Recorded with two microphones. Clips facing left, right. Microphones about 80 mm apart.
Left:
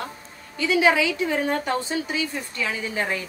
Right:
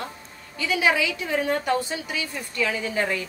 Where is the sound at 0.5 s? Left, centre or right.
Left.